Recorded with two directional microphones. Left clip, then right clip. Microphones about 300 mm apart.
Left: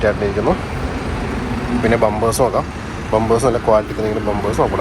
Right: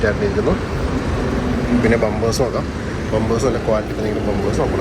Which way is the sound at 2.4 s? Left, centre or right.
Centre.